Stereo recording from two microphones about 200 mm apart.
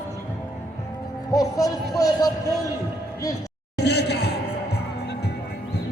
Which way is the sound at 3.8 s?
55° left (ahead or behind).